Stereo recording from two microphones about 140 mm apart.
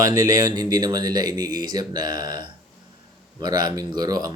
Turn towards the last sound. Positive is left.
turn(degrees=-30)  # may be behind; listen again after turning